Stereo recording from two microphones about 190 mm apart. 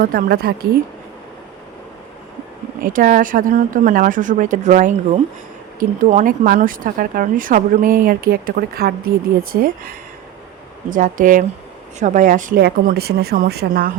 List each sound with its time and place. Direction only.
0.0 s speech: 50° right (ahead or behind)
2.8 s speech: 45° right (ahead or behind)